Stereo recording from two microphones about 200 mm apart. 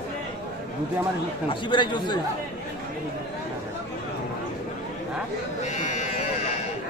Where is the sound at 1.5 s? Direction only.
25° left (ahead or behind).